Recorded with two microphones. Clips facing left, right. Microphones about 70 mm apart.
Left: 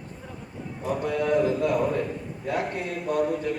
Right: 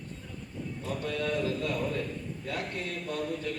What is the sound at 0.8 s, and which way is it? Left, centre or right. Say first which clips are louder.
A man's voice: left 7 dB; centre.